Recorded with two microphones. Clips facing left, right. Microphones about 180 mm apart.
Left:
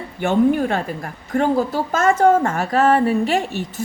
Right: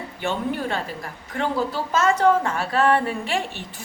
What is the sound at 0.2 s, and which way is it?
A woman's voice, 50° left (ahead or behind).